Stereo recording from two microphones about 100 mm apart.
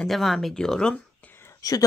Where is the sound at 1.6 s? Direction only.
35° left (ahead or behind).